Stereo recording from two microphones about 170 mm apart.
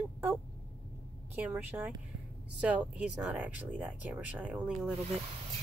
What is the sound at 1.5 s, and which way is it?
Speech, 10° right (ahead or behind).